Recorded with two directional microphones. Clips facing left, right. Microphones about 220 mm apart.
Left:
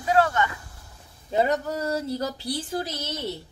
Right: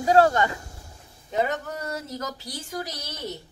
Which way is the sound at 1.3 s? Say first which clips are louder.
Left 3 dB; 30° left (ahead or behind).